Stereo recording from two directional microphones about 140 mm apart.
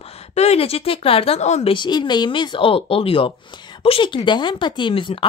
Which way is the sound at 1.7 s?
35° left (ahead or behind).